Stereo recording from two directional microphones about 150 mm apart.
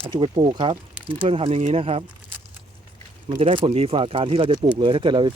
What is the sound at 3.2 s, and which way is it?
Speech, 35° right (ahead or behind).